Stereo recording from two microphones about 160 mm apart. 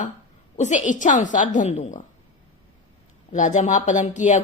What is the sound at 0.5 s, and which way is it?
Speech, 50° left (ahead or behind).